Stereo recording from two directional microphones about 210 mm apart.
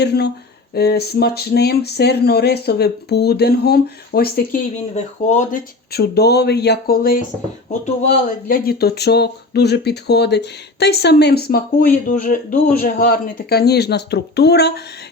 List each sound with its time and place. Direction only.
0.0 s speech: 50° left (ahead or behind)
4.9 s speech: 35° left (ahead or behind)
5.9 s speech: 50° left (ahead or behind)
8.4 s speech: 45° left (ahead or behind)